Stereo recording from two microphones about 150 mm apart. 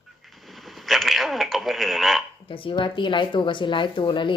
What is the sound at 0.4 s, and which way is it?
Radio, centre (ahead or behind).